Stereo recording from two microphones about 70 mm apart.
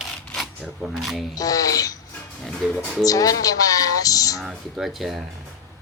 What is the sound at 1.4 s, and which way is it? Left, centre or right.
Speech, left.